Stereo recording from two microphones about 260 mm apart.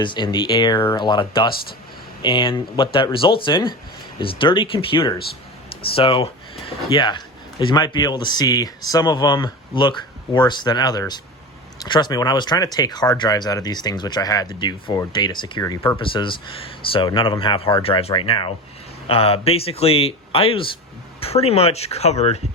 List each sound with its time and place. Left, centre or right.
0.0 s speech: centre